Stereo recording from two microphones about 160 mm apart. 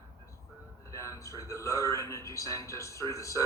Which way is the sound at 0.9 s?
20° left (ahead or behind).